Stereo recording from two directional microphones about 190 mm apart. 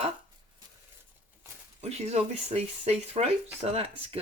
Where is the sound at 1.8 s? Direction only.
35° right (ahead or behind).